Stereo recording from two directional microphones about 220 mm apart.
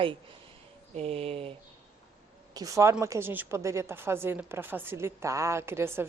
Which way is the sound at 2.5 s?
15° right (ahead or behind).